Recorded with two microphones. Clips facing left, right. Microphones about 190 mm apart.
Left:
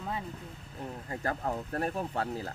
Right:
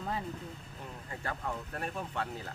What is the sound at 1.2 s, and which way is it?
Speech, 40° left (ahead or behind).